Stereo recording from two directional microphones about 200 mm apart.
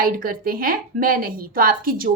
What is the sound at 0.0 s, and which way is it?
A woman's voice, 45° right (ahead or behind).